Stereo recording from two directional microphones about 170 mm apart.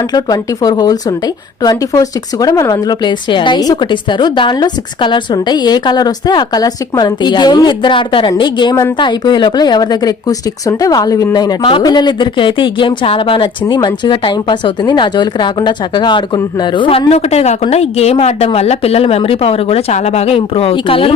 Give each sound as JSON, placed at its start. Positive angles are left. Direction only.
{"t": 0.1, "sound": "speech", "side_deg": 25}